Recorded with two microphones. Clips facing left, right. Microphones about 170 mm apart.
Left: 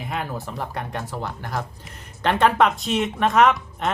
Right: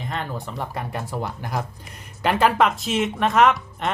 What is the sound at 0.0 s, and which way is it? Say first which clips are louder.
Speech: left 1 dB; 5° left (ahead or behind).